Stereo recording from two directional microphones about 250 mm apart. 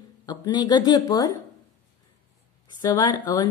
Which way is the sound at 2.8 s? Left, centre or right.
Centre.